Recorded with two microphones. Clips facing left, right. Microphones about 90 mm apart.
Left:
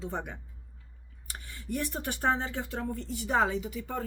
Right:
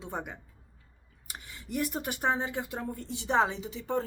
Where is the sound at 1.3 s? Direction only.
15° right (ahead or behind).